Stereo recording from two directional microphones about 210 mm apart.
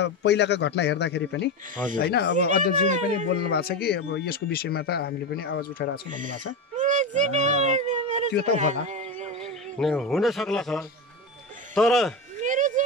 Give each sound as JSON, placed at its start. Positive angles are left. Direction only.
{"t": 0.0, "sound": "speech", "side_deg": 55}
{"t": 2.3, "sound": "speech", "side_deg": -35}
{"t": 3.4, "sound": "speech", "side_deg": 50}
{"t": 6.0, "sound": "speech", "side_deg": -40}
{"t": 6.8, "sound": "a sound", "side_deg": -35}
{"t": 9.8, "sound": "speech", "side_deg": 0}
{"t": 12.4, "sound": "a sound", "side_deg": -35}